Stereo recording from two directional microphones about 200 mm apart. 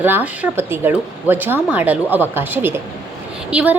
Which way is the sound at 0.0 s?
10° right (ahead or behind).